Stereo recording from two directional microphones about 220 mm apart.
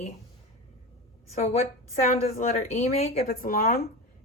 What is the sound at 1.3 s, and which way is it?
A woman's voice, 30° left (ahead or behind).